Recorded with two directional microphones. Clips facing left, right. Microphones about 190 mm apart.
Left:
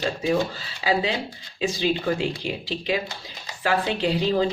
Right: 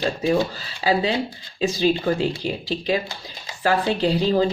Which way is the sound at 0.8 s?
40° right (ahead or behind).